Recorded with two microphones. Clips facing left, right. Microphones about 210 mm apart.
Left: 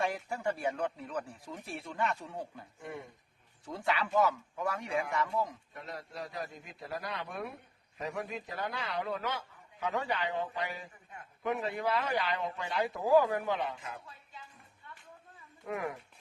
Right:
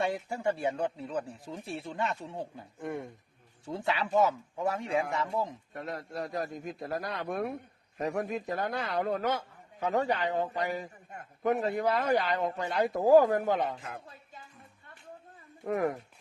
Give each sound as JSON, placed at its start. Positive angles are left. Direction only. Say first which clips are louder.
{"t": 0.3, "sound": "speech", "louder": "right 4 dB", "side_deg": -25}
{"t": 3.7, "sound": "speech", "louder": "right 2 dB", "side_deg": -25}
{"t": 5.7, "sound": "a man's voice", "louder": "right 6 dB", "side_deg": -50}
{"t": 13.9, "sound": "a sound", "louder": "right 3 dB", "side_deg": -45}
{"t": 15.6, "sound": "a man's voice", "louder": "right 7 dB", "side_deg": -45}